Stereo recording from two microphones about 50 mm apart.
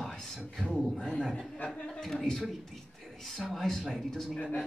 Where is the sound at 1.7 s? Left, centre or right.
Centre.